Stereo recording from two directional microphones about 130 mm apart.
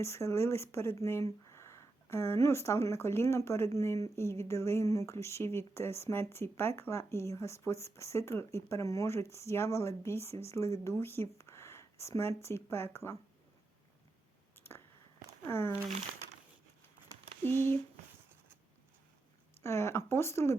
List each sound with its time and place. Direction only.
0.0 s speech: 20° left (ahead or behind)
14.5 s a sound: 15° left (ahead or behind)
15.4 s speech: 20° left (ahead or behind)
17.4 s speech: 15° left (ahead or behind)
19.6 s speech: 20° left (ahead or behind)